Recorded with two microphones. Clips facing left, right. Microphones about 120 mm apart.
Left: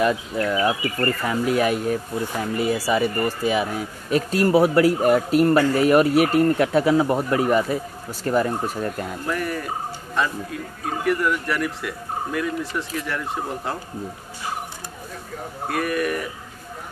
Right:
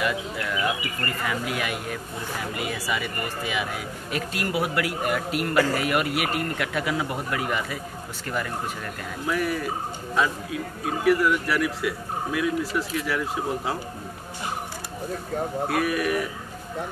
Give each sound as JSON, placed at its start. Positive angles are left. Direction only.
{"t": 0.0, "sound": "speech", "side_deg": 35}
{"t": 9.2, "sound": "speech", "side_deg": 0}
{"t": 15.7, "sound": "speech", "side_deg": 0}